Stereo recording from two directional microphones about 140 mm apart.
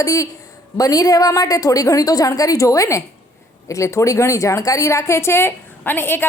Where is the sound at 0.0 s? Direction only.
25° left (ahead or behind).